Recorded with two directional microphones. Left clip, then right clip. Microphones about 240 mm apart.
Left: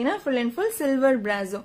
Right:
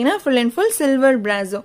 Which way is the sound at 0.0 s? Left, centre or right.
Right.